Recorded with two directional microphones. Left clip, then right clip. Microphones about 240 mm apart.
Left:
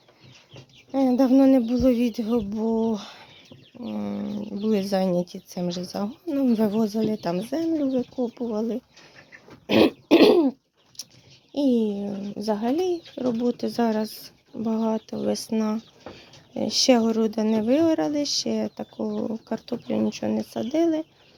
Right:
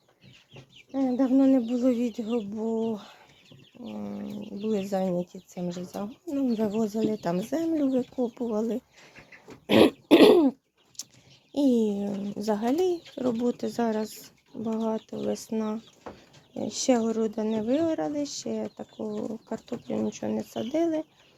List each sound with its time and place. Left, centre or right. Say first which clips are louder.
0.9 s a child's voice: left 6 dB; centre
9.6 s throat clearing: left 1 dB; centre
11.0 s a sound: left 2 dB; centre
11.5 s a child's voice: left 1 dB; centre